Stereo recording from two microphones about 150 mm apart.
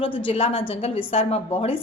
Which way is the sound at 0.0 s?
40° left (ahead or behind).